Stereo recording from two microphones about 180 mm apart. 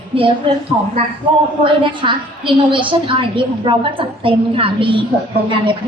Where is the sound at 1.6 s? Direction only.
25° right (ahead or behind).